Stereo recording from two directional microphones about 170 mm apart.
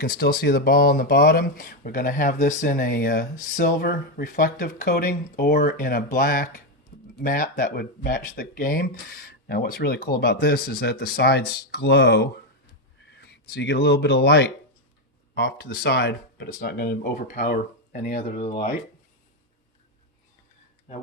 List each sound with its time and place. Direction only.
0.0 s speech: 65° left (ahead or behind)
13.0 s speech: 90° left; by 18.5 s 40° left (ahead or behind)